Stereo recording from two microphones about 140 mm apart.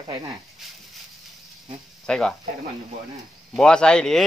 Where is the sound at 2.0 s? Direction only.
5° left (ahead or behind).